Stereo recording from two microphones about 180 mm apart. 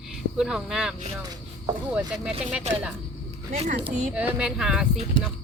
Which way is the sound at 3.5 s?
45° right (ahead or behind).